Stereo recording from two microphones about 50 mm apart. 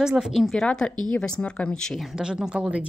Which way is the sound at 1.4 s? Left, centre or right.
Left.